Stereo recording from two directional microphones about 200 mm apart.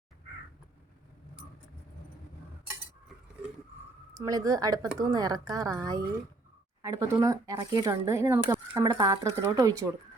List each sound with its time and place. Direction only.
4.1 s speech: 15° right (ahead or behind)